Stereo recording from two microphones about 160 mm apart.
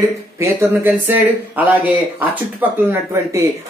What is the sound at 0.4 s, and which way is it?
Speech, 15° right (ahead or behind).